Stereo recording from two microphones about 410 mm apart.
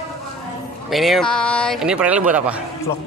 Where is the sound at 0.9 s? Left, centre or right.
Centre.